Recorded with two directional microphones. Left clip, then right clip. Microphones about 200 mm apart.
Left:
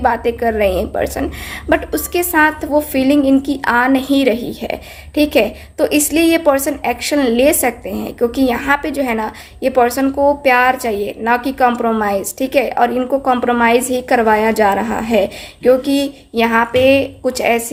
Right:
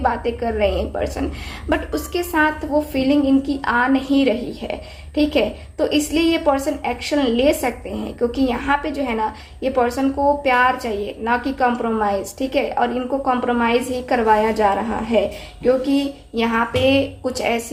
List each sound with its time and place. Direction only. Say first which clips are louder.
0.0 s a woman's voice: left 6 dB; 40° left (ahead or behind)